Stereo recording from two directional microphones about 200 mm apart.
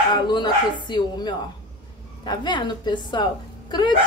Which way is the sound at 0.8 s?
20° left (ahead or behind).